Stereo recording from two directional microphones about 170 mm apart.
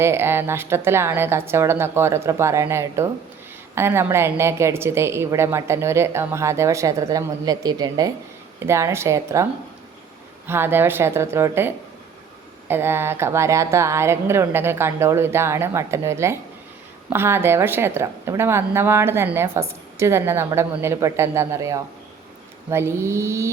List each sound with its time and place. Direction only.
0.0 s a woman's voice: 15° right (ahead or behind)